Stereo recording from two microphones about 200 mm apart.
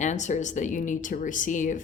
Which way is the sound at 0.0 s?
35° left (ahead or behind).